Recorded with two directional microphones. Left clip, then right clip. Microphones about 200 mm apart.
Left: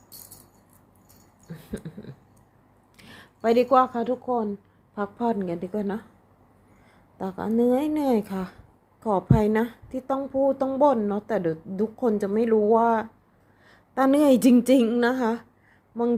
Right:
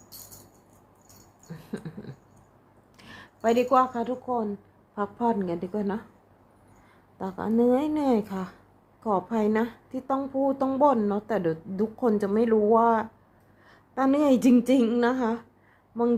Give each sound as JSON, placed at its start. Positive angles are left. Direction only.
{"t": 1.5, "sound": "a sound", "side_deg": 10}
{"t": 3.0, "sound": "a woman's voice", "side_deg": 15}
{"t": 7.2, "sound": "a woman's voice", "side_deg": 15}
{"t": 13.7, "sound": "a woman's voice", "side_deg": 25}